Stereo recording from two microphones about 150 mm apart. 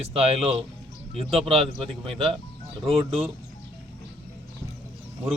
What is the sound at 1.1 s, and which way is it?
Speech, 40° right (ahead or behind).